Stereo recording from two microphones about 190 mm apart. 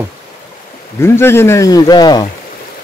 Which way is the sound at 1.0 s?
15° left (ahead or behind).